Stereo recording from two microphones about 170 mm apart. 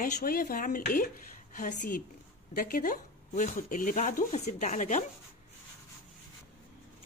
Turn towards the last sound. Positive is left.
turn(degrees=45)  # may be behind; listen again after turning